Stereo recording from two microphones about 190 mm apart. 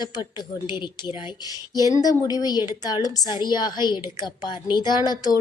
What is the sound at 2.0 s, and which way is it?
A woman's voice, 20° left (ahead or behind).